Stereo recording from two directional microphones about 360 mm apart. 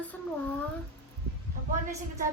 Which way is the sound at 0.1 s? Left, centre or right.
Centre.